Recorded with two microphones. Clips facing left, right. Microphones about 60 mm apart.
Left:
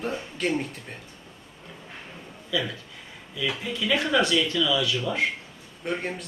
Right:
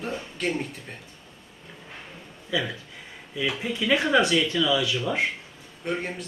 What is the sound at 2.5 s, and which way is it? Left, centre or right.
Speech, right.